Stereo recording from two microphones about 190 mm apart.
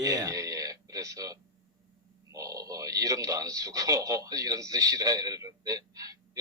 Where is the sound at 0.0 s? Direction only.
20° right (ahead or behind).